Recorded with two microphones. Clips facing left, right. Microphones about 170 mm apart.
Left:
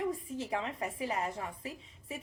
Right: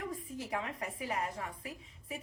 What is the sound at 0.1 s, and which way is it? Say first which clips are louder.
A woman's voice: left 3 dB; 25° left (ahead or behind).